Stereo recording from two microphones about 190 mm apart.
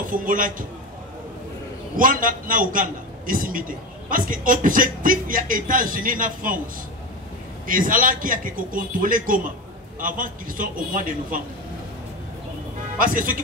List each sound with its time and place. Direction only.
0.1 s a man's voice: 45° right (ahead or behind)
2.0 s a man's voice: 45° right (ahead or behind)
7.6 s a man's voice: 45° right (ahead or behind)
13.0 s a man's voice: 45° right (ahead or behind)